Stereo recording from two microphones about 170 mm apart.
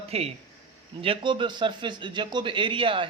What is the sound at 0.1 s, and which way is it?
Speech, 35° right (ahead or behind).